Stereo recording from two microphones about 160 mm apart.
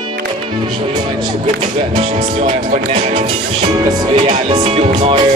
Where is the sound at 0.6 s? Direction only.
30° right (ahead or behind).